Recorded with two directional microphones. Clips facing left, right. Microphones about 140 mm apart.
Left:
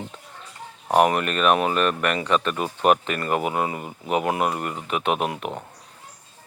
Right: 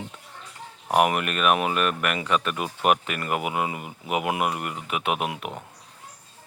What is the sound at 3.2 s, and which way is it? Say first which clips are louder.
Speech: left 3 dB; 35° left (ahead or behind).